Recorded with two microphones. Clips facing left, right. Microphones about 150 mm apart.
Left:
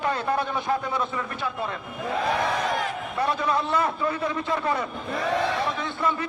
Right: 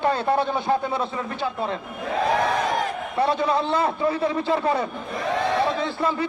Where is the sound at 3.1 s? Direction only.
30° right (ahead or behind).